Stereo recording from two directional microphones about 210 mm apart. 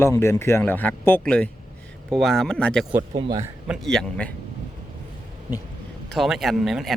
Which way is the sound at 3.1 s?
25° right (ahead or behind).